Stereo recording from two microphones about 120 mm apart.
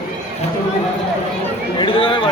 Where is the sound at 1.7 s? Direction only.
45° left (ahead or behind).